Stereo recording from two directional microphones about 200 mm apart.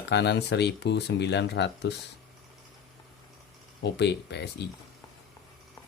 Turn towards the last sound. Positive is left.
turn(degrees=60)  # may be behind; listen again after turning